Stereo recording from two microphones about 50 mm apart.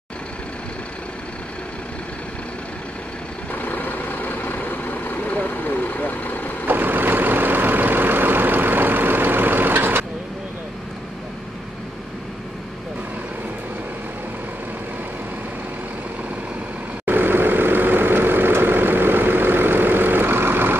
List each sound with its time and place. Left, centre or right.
3.5 s vehicle: left
6.7 s vehicle: right
17.0 s vehicle: right